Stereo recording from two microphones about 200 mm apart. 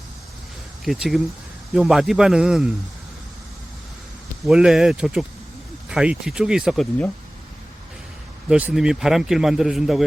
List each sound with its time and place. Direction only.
0.9 s a man's voice: centre (ahead or behind)
4.4 s a man's voice: 5° right (ahead or behind)
8.4 s a man's voice: 5° right (ahead or behind)